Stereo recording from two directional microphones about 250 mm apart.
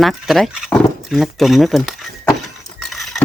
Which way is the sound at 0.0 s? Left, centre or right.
Centre.